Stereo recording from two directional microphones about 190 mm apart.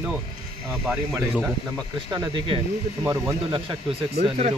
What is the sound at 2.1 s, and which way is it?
A man's voice, 20° right (ahead or behind).